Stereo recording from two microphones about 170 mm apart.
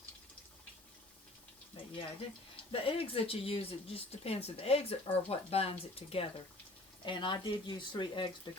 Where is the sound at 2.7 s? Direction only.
35° left (ahead or behind).